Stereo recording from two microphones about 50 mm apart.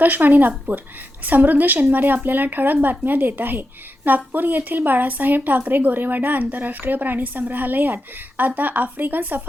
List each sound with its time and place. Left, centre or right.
0.0 s a woman's voice: right